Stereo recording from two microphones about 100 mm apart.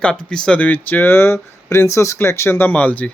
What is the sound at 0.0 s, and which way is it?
Speech, 10° left (ahead or behind).